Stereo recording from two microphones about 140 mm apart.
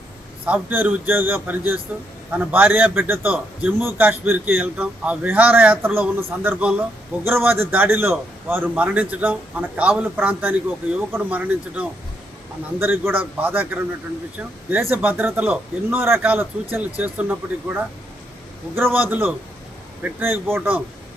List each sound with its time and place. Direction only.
0.4 s speech: 10° right (ahead or behind)